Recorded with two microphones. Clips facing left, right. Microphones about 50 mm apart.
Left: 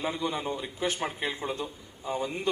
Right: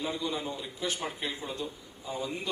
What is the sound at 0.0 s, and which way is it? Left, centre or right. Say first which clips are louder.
A man's voice: left 2 dB; left.